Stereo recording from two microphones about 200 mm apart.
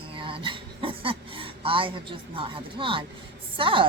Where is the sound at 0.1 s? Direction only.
25° right (ahead or behind).